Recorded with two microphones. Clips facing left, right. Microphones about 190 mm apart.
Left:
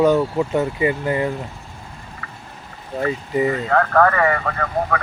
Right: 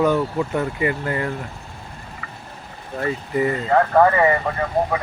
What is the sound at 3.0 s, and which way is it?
Speech, 20° left (ahead or behind).